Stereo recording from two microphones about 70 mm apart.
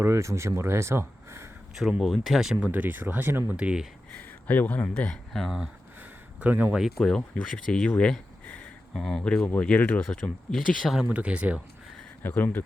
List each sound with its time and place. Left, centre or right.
0.0 s speech: right
1.8 s speech: centre
2.6 s speech: right
3.6 s speech: centre
4.1 s speech: left
5.3 s speech: centre
6.0 s a sound: right
6.7 s speech: centre
7.0 s speech: centre
10.0 s speech: centre
10.8 s speech: centre
11.1 s speech: centre
12.2 s speech: left